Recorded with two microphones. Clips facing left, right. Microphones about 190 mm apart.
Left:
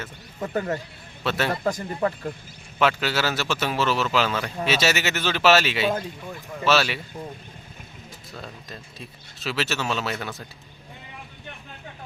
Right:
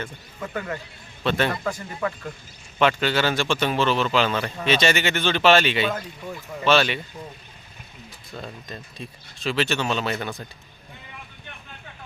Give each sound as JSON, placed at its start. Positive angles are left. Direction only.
{"t": 0.3, "sound": "speech", "side_deg": 35}
{"t": 1.2, "sound": "a man's voice", "side_deg": 5}
{"t": 1.6, "sound": "speech", "side_deg": 35}
{"t": 2.7, "sound": "speech", "side_deg": 5}
{"t": 8.4, "sound": "speech", "side_deg": 0}